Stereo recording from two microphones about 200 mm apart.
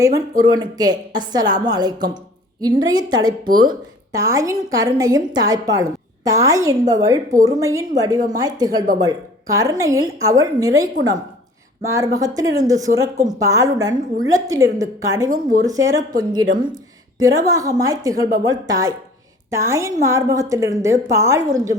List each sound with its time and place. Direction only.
0.0 s a woman's voice: 20° right (ahead or behind)
15.3 s speech: 40° right (ahead or behind)
15.6 s a woman's voice: 15° right (ahead or behind)